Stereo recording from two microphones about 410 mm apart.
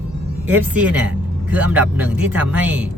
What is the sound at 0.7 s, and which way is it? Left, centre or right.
Speech, centre.